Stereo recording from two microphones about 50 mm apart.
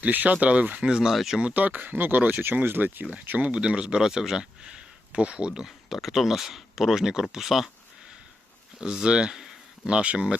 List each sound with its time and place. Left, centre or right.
0.0 s speech: right
0.9 s speech: centre
1.5 s speech: right
2.4 s speech: right
3.5 s speech: centre
5.1 s speech: right
5.6 s speech: centre
8.8 s speech: centre
9.8 s speech: right